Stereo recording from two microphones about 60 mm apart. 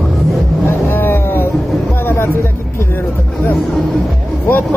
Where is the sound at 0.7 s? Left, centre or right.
Left.